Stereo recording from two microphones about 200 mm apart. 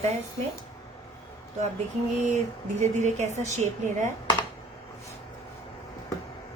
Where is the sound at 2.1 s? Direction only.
35° right (ahead or behind).